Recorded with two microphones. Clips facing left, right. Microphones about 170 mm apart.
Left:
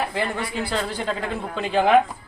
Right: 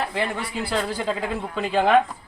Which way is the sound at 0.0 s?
Centre (ahead or behind).